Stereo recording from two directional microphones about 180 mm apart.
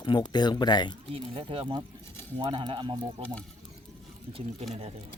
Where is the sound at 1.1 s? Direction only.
30° right (ahead or behind).